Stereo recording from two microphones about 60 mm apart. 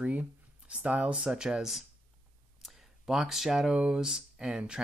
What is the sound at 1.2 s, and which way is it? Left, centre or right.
Speech, centre.